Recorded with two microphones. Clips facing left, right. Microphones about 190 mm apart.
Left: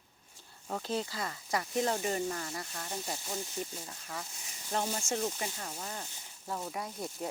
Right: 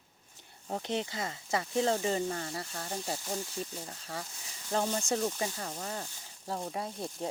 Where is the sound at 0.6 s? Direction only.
20° right (ahead or behind).